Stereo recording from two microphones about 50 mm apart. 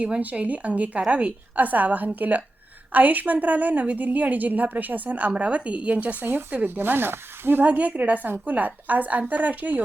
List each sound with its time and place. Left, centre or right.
0.0 s a woman's voice: right
6.2 s speech: right
7.6 s a woman's voice: right